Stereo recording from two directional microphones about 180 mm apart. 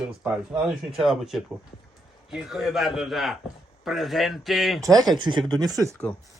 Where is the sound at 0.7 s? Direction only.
Centre (ahead or behind).